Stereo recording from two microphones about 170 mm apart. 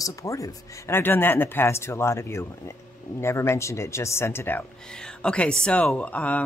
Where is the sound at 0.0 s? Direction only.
20° left (ahead or behind).